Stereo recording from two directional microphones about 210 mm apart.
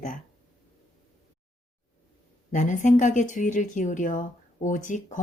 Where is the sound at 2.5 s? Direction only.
35° left (ahead or behind).